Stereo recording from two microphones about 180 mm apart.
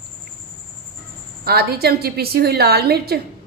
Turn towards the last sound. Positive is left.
turn(degrees=-60)  # may be behind; listen again after turning